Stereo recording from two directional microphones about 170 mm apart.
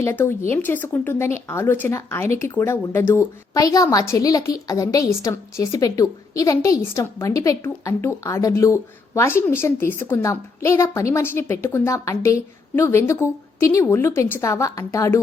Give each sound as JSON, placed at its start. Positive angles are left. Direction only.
{"t": 0.0, "sound": "speech", "side_deg": 15}